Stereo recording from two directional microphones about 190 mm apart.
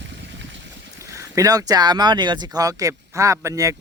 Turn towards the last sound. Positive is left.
turn(degrees=-15)  # may be behind; listen again after turning